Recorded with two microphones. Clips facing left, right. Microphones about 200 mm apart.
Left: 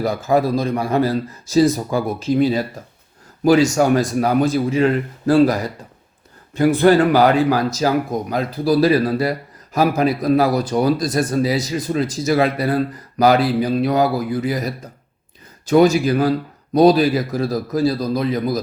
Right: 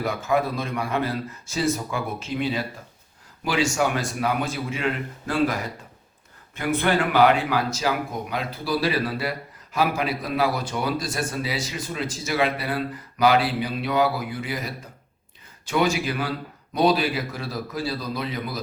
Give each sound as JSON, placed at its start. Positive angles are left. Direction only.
{"t": 0.0, "sound": "speech", "side_deg": 35}